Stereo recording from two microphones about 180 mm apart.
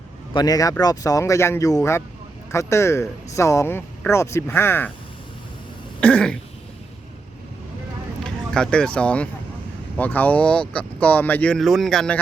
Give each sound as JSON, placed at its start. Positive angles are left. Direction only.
{"t": 0.3, "sound": "a man's voice", "side_deg": 20}
{"t": 6.0, "sound": "cough", "side_deg": 5}
{"t": 8.2, "sound": "a man's voice", "side_deg": 5}